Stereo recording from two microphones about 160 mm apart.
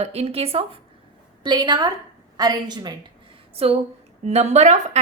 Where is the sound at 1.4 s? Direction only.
30° right (ahead or behind).